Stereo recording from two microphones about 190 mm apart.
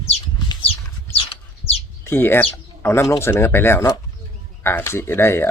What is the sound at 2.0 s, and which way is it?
Speech, 10° left (ahead or behind).